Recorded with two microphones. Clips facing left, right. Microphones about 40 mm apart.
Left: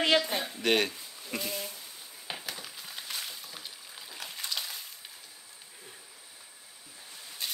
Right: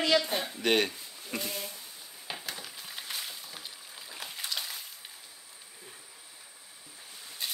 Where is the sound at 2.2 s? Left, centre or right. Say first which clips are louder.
Even; centre.